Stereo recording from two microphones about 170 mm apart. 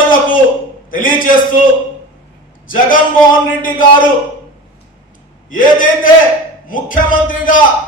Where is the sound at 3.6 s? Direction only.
50° left (ahead or behind).